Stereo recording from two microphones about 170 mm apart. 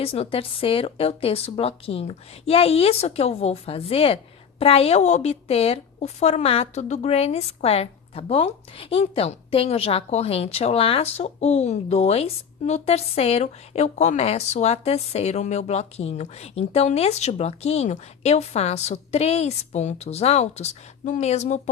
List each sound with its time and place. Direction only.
0.0 s a woman's voice: 35° left (ahead or behind)